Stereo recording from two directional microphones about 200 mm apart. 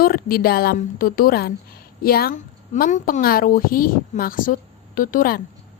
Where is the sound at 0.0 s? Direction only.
50° left (ahead or behind).